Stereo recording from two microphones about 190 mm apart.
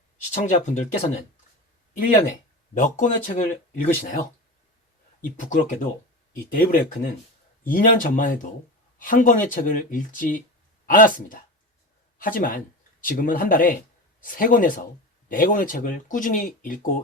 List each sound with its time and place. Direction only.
0.4 s speech: 40° left (ahead or behind)
5.5 s speech: 40° left (ahead or behind)